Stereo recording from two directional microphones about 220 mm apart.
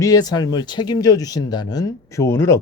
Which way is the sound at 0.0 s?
15° left (ahead or behind).